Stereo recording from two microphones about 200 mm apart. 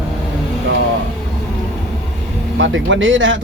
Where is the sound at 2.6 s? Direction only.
70° right (ahead or behind).